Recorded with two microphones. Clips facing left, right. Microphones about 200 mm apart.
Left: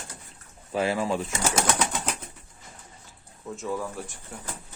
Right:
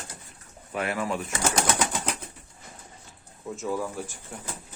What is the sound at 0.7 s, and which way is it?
Speech, 30° left (ahead or behind).